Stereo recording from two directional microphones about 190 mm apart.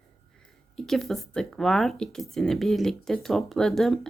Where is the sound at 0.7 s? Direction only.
Centre (ahead or behind).